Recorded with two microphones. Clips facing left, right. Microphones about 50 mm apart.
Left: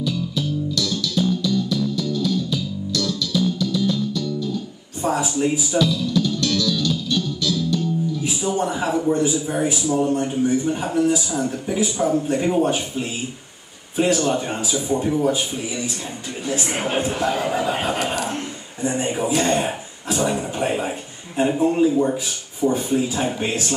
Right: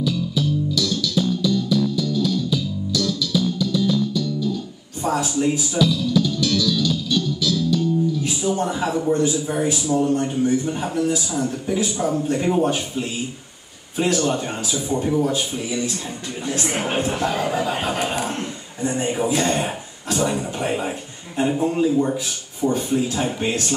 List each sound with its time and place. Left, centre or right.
0.0 s music: centre
5.0 s music: centre
8.5 s a man's voice: centre
18.1 s speech: centre
18.8 s a man's voice: centre